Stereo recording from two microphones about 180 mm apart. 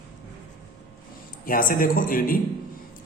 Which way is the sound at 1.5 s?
50° left (ahead or behind).